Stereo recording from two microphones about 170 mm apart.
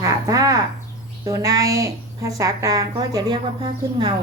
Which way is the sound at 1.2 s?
20° right (ahead or behind).